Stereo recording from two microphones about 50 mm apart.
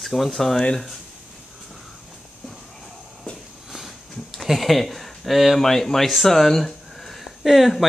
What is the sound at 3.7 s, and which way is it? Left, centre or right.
Speech, centre.